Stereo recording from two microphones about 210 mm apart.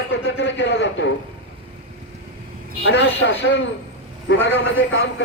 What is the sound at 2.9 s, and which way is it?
Speech, 60° left (ahead or behind).